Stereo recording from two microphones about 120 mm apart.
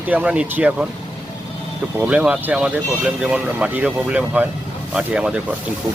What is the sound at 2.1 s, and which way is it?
Speech, 10° right (ahead or behind).